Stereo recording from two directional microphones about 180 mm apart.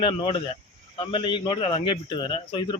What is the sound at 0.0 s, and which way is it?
Speech, 30° left (ahead or behind).